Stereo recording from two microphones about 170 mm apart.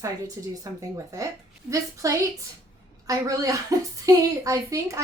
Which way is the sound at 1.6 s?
20° right (ahead or behind).